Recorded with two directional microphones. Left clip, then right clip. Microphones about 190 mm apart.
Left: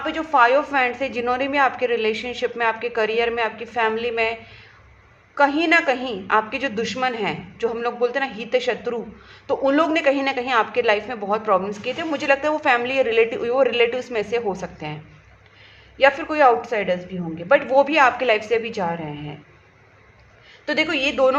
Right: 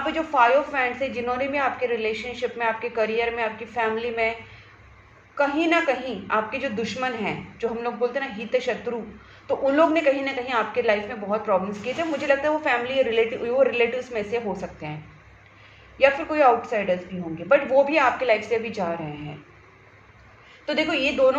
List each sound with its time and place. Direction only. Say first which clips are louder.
0.0 s a woman's voice: left 3 dB; 45° left (ahead or behind)
16.0 s a woman's voice: left 3 dB; 45° left (ahead or behind)
20.7 s a woman's voice: left 2 dB; 45° left (ahead or behind)